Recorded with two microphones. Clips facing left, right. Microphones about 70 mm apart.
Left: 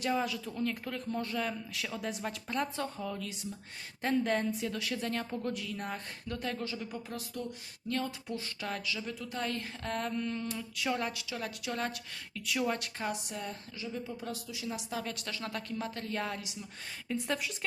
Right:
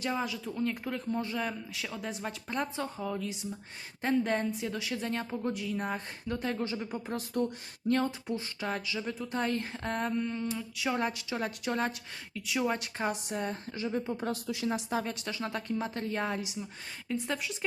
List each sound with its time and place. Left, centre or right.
0.0 s a woman's voice: centre; by 8.1 s right
8.3 s speech: centre
10.9 s a woman's voice: right
11.8 s speech: centre; by 14.8 s right
15.0 s speech: right
17.1 s speech: centre